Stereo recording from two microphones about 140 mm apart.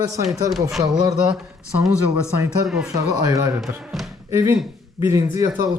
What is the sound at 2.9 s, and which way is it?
Speech, 25° right (ahead or behind).